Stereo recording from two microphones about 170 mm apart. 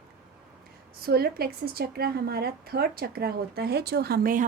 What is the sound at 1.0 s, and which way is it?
A woman's voice, 65° right (ahead or behind).